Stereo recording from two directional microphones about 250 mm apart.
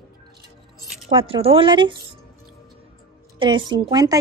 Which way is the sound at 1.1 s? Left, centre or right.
Right.